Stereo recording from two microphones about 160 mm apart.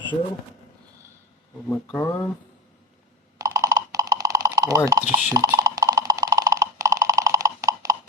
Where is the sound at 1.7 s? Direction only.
15° left (ahead or behind).